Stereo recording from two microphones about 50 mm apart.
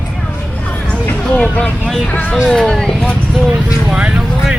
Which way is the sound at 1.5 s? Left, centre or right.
Left.